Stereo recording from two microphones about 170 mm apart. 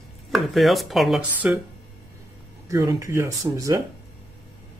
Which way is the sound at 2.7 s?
20° right (ahead or behind).